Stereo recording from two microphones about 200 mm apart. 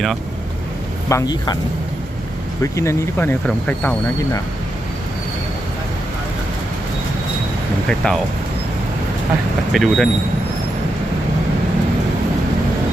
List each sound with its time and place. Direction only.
1.1 s speech: 20° left (ahead or behind)
2.6 s speech: 15° left (ahead or behind)
7.9 s speech: 5° left (ahead or behind)
9.7 s speech: centre (ahead or behind)